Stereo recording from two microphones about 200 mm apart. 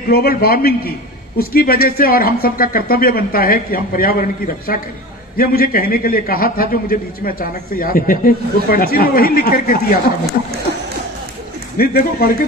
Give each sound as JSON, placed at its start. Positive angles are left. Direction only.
{"t": 0.1, "sound": "a man's voice", "side_deg": 50}
{"t": 11.7, "sound": "a man's voice", "side_deg": 45}